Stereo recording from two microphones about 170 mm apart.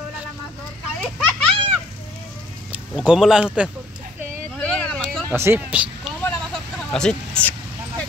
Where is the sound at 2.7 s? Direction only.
5° right (ahead or behind).